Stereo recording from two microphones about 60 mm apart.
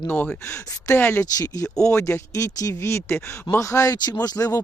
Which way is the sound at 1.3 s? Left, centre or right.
Left.